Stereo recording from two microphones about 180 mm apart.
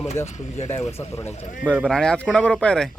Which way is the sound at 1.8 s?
5° left (ahead or behind).